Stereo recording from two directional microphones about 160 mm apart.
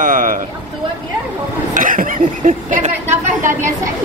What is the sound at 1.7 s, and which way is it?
Speech, 55° right (ahead or behind).